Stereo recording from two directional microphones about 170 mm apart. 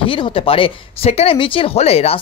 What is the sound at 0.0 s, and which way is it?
Speech, 30° left (ahead or behind).